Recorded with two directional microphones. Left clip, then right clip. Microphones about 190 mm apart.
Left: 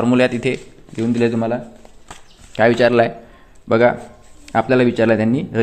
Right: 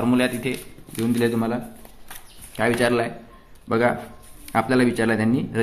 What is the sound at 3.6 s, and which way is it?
Speech, 30° left (ahead or behind).